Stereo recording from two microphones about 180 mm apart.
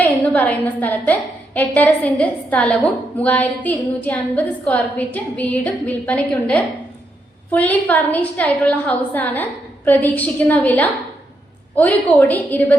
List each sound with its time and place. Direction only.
0.0 s a woman's voice: 10° left (ahead or behind)